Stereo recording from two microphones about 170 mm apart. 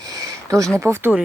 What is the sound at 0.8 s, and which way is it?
Speech, 15° right (ahead or behind).